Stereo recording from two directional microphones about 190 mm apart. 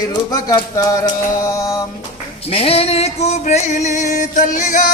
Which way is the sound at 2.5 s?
30° left (ahead or behind).